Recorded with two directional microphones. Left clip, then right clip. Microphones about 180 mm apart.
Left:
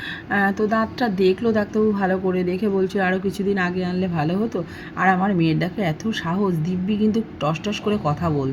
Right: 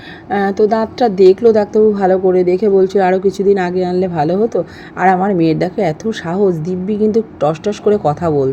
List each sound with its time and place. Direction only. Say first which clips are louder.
0.3 s a woman's voice: right 8 dB; 20° right (ahead or behind)